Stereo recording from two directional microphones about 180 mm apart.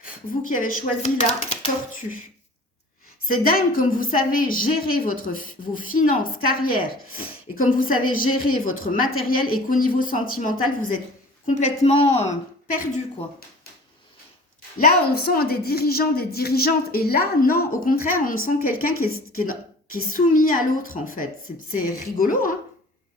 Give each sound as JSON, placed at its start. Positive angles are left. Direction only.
{"t": 0.0, "sound": "a woman's voice", "side_deg": 50}
{"t": 3.2, "sound": "a woman's voice", "side_deg": 55}
{"t": 14.8, "sound": "a woman's voice", "side_deg": 60}